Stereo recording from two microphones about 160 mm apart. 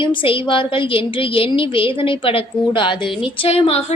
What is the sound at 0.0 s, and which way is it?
A woman's voice, 30° left (ahead or behind).